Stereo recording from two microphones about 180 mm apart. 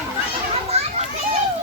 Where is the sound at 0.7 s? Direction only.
35° right (ahead or behind).